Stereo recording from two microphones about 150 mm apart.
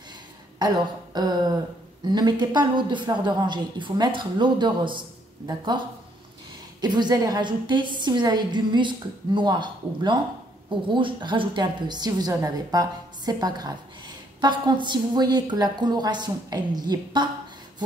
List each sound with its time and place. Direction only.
0.6 s a sound: 25° right (ahead or behind)
2.0 s speech: 30° right (ahead or behind)
6.8 s a woman's voice: 30° right (ahead or behind)